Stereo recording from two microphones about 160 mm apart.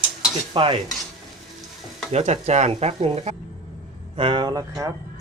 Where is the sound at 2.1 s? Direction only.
45° right (ahead or behind).